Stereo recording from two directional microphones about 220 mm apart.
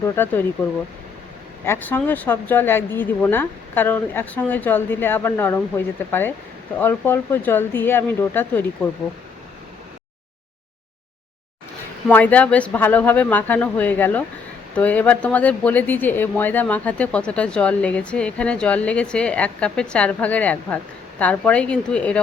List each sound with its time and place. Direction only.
0.0 s speech: 10° left (ahead or behind)
1.6 s speech: 10° left (ahead or behind)
12.0 s speech: 5° left (ahead or behind)